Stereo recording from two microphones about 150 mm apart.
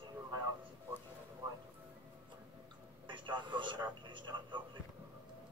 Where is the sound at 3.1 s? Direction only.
30° right (ahead or behind).